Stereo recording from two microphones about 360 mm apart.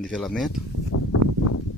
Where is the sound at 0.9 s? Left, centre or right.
Left.